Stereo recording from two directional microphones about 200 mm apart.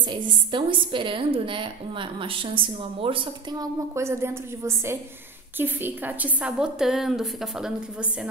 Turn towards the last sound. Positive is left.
turn(degrees=0)  # may be behind; listen again after turning